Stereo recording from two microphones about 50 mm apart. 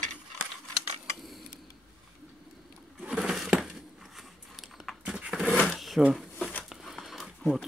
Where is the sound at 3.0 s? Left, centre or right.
Centre.